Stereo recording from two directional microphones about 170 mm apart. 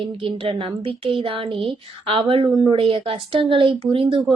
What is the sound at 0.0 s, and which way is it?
A woman's voice, 30° right (ahead or behind).